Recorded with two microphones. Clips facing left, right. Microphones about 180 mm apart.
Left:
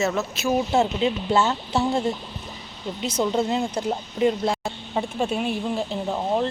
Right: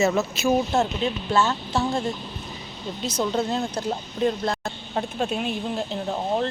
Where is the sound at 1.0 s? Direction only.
20° left (ahead or behind).